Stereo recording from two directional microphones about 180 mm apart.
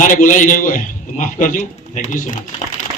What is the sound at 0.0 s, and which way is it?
Speech, 45° left (ahead or behind).